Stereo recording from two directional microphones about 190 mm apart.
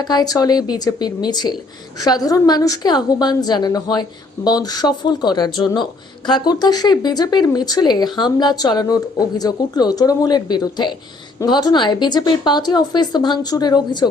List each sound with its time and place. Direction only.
0.0 s speech: 20° left (ahead or behind)